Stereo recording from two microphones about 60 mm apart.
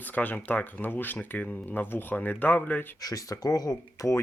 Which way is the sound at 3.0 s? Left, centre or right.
Left.